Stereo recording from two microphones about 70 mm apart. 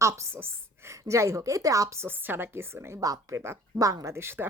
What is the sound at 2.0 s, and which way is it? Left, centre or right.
Speech, right.